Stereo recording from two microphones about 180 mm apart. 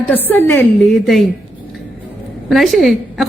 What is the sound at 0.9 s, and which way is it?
Speech, centre (ahead or behind).